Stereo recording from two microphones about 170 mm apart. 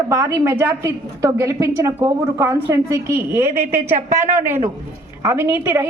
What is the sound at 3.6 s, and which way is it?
A woman's voice, 50° right (ahead or behind).